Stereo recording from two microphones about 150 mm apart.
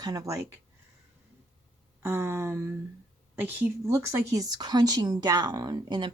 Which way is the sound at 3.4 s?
15° right (ahead or behind).